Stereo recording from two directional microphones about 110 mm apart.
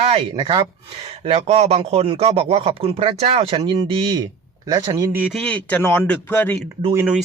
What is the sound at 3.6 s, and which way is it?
Speech, 45° right (ahead or behind).